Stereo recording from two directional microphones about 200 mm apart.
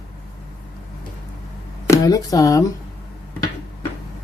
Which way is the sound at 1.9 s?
20° left (ahead or behind).